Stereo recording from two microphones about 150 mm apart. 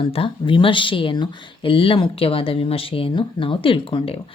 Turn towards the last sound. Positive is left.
turn(degrees=35)  # may be behind; listen again after turning